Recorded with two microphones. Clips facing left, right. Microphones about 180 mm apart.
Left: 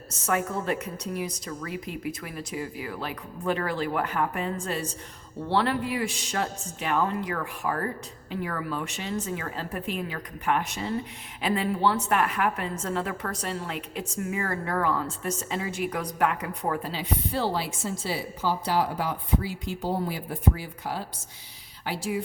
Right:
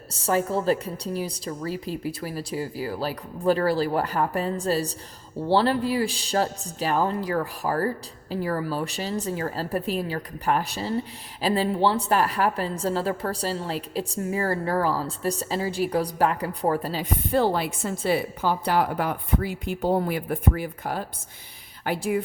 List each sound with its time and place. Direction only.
0.1 s a woman's voice: 35° right (ahead or behind); by 22.2 s 55° right (ahead or behind)